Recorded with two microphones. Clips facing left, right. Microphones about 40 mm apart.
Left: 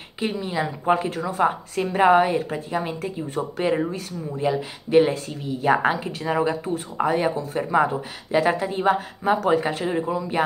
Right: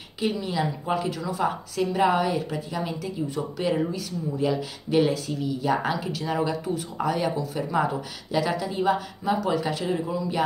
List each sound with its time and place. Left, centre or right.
0.2 s speech: left
4.4 s speech: left